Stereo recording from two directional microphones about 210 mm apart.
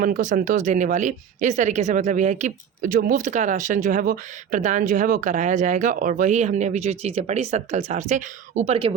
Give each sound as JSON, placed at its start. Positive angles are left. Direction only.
{"t": 0.0, "sound": "speech", "side_deg": -35}